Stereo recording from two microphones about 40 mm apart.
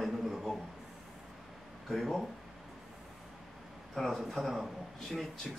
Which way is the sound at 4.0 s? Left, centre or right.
Centre.